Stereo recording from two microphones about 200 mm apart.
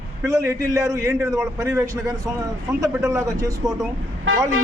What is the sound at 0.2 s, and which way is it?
A man's voice, 15° right (ahead or behind).